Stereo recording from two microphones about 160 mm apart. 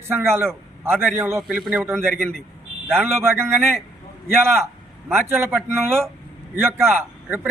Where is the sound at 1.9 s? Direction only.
5° left (ahead or behind).